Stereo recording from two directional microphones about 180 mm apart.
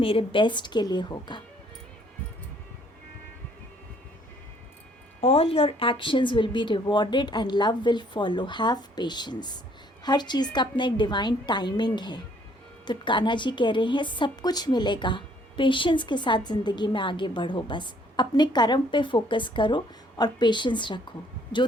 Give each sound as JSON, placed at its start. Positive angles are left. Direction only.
{"t": 0.0, "sound": "a woman's voice", "side_deg": 30}
{"t": 5.2, "sound": "a woman's voice", "side_deg": 35}